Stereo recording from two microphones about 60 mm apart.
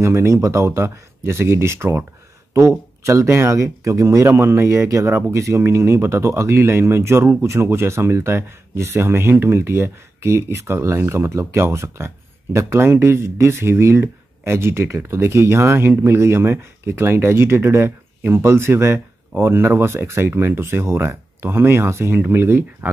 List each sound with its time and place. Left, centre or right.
0.0 s speech: right